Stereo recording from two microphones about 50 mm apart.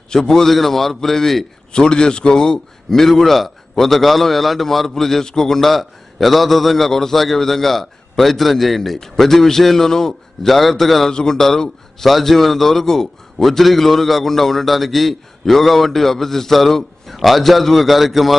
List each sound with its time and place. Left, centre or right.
0.1 s a man's voice: centre
1.7 s a man's voice: centre